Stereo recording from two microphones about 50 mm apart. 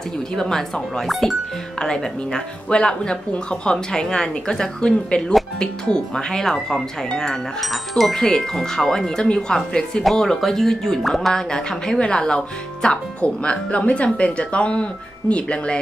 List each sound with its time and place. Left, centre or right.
0.4 s speech: centre
7.6 s speech: centre; by 15.8 s left